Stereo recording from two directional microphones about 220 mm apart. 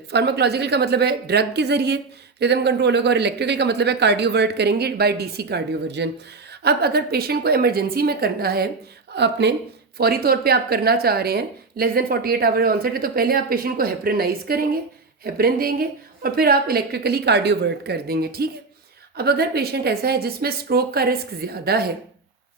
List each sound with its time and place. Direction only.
0.1 s a woman's voice: 50° right (ahead or behind)